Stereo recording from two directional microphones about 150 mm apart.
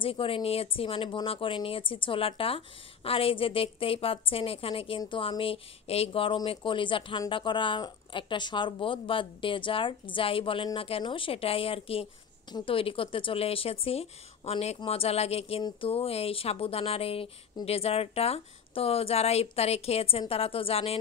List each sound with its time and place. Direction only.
0.0 s speech: 35° left (ahead or behind)